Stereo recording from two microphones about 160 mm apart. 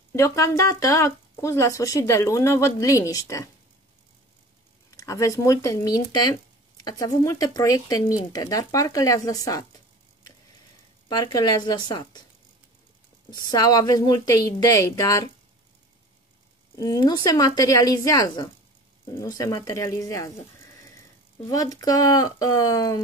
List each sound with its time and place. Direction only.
0.1 s speech: 20° left (ahead or behind)
4.9 s speech: 20° left (ahead or behind)
11.1 s speech: 25° left (ahead or behind)
13.3 s speech: 25° left (ahead or behind)
16.7 s speech: 25° left (ahead or behind)
21.5 s speech: 20° left (ahead or behind)